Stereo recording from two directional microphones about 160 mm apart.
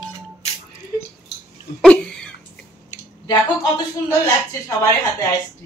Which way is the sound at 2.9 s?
45° left (ahead or behind).